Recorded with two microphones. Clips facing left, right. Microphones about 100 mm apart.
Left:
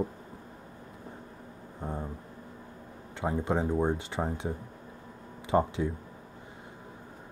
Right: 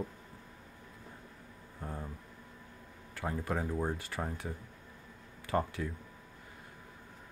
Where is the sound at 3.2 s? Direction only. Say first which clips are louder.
Left 6 dB; 25° left (ahead or behind).